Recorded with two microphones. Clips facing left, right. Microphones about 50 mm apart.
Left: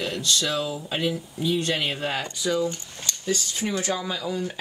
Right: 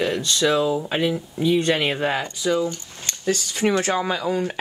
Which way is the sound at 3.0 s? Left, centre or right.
Right.